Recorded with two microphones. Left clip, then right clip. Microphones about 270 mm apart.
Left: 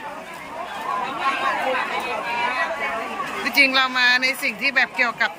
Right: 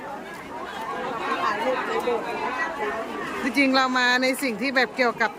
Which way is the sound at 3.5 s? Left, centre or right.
Centre.